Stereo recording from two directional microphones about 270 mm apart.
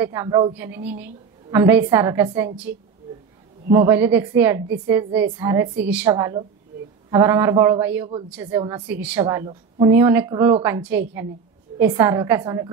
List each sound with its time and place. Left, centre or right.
0.0 s a woman's voice: centre
3.7 s a woman's voice: centre
7.8 s a woman's voice: centre